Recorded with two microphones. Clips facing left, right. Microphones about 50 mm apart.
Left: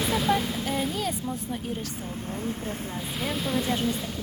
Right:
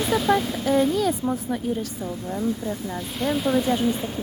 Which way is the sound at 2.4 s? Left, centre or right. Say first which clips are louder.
Right 7 dB; left.